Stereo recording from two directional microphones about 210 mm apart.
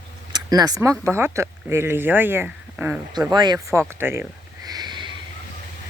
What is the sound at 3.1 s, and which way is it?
Speech, 20° right (ahead or behind).